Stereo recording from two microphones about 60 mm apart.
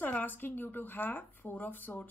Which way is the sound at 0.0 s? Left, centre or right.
Left.